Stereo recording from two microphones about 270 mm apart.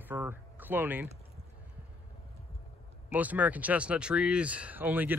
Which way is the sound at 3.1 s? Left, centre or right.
Centre.